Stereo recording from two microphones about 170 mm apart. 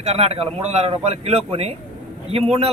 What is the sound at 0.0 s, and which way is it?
Speech, 40° right (ahead or behind).